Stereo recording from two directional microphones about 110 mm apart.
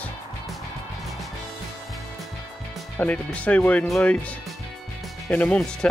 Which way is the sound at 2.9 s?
15° left (ahead or behind).